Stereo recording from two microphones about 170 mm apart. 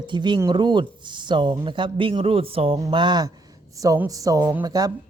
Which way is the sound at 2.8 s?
25° right (ahead or behind).